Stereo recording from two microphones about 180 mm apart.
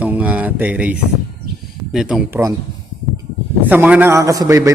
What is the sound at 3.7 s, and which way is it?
A man's voice, 10° right (ahead or behind).